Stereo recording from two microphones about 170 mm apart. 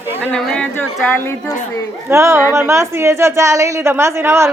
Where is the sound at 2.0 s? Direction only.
15° right (ahead or behind).